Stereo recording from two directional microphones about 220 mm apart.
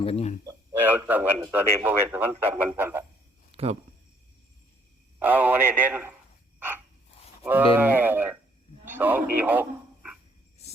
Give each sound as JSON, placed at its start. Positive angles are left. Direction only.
{"t": 0.0, "sound": "speech", "side_deg": 25}
{"t": 0.4, "sound": "speech", "side_deg": -10}
{"t": 3.5, "sound": "a sound", "side_deg": -25}
{"t": 5.2, "sound": "speech", "side_deg": -10}
{"t": 6.6, "sound": "frog", "side_deg": -10}
{"t": 7.4, "sound": "a man's voice", "side_deg": -10}
{"t": 9.4, "sound": "dog", "side_deg": -10}